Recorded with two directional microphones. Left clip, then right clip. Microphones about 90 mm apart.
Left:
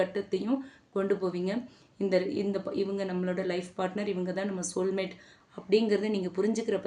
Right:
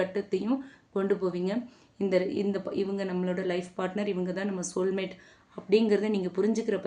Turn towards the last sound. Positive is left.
turn(degrees=-15)  # may be behind; listen again after turning